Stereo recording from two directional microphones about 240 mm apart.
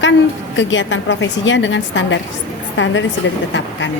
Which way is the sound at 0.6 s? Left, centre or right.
Left.